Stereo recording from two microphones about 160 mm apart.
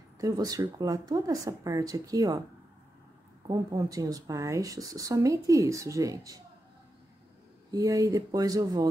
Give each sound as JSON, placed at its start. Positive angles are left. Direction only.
{"t": 0.2, "sound": "speech", "side_deg": -20}
{"t": 3.4, "sound": "speech", "side_deg": -20}
{"t": 7.7, "sound": "speech", "side_deg": -20}